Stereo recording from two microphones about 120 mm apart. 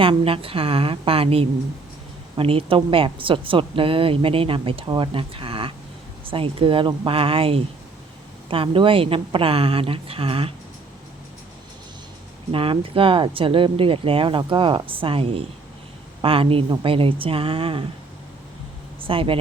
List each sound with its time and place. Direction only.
0.0 s a woman's voice: 50° right (ahead or behind)
12.5 s a woman's voice: 50° right (ahead or behind)
19.0 s a woman's voice: 50° right (ahead or behind)